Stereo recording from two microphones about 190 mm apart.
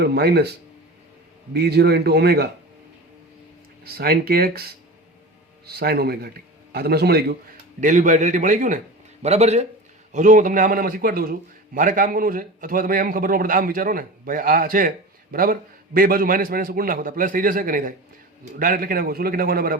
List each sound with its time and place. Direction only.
0.0 s a man's voice: 55° right (ahead or behind)
1.5 s a man's voice: 60° right (ahead or behind)
3.8 s a man's voice: 55° right (ahead or behind)
7.8 s a man's voice: 40° right (ahead or behind)